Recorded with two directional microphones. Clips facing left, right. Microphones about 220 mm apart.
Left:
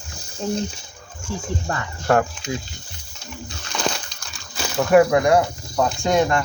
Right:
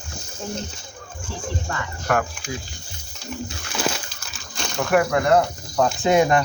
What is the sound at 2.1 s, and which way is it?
Speech, 25° left (ahead or behind).